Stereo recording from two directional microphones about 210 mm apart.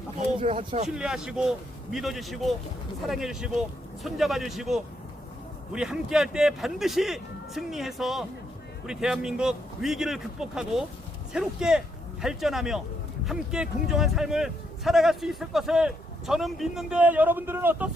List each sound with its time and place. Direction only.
0.4 s speech: 25° right (ahead or behind)
0.9 s a man's voice: 5° right (ahead or behind)